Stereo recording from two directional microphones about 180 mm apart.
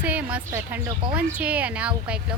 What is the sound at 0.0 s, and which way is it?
A woman's voice, 5° right (ahead or behind).